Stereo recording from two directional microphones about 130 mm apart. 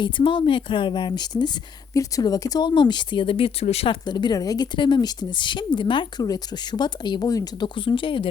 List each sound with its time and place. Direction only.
0.0 s a woman's voice: 40° left (ahead or behind)
4.0 s a woman's voice: 35° left (ahead or behind)
7.8 s a woman's voice: 40° left (ahead or behind)